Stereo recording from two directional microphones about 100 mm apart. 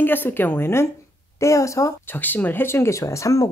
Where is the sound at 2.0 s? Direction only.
20° left (ahead or behind).